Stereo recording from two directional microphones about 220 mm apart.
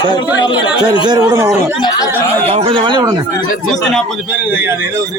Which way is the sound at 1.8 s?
15° left (ahead or behind).